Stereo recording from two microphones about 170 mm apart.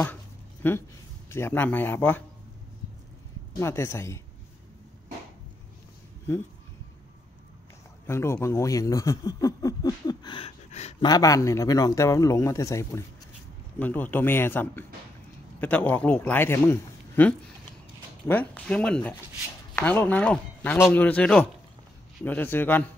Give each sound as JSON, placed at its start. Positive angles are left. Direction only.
{"t": 0.0, "sound": "a sound", "side_deg": 10}
{"t": 1.3, "sound": "a man's voice", "side_deg": 15}
{"t": 3.5, "sound": "a man's voice", "side_deg": 15}
{"t": 8.1, "sound": "speech", "side_deg": 15}
{"t": 11.1, "sound": "a man's voice", "side_deg": 20}